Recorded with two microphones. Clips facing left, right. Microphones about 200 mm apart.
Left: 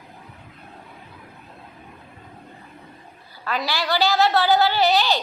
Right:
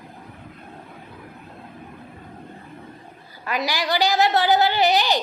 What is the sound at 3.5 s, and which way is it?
A woman's voice, 15° right (ahead or behind).